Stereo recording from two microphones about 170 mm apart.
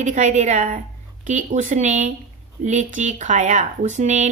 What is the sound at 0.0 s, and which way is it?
Speech, 45° right (ahead or behind).